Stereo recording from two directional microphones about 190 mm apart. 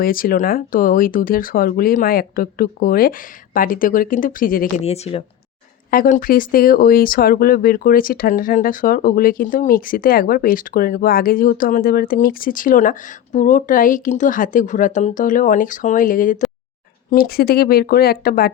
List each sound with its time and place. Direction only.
0.0 s speech: 50° left (ahead or behind)
4.8 s speech: 30° left (ahead or behind)
5.9 s speech: 45° left (ahead or behind)